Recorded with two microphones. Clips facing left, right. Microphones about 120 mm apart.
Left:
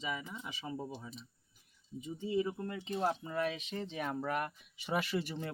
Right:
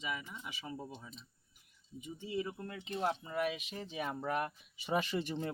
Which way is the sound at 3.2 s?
10° right (ahead or behind).